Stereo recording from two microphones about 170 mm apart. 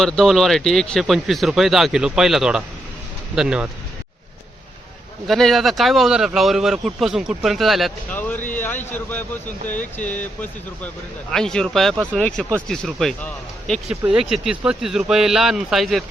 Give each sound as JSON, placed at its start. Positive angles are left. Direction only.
{"t": 0.0, "sound": "speech", "side_deg": 0}
{"t": 5.3, "sound": "speech", "side_deg": 0}
{"t": 8.5, "sound": "speech", "side_deg": 10}